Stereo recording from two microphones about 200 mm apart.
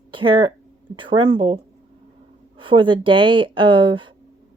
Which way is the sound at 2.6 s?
25° right (ahead or behind).